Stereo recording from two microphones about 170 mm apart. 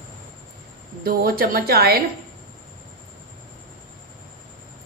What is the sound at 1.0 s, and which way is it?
Speech, 60° right (ahead or behind).